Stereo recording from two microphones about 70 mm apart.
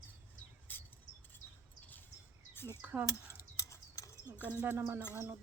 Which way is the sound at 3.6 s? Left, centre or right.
Left.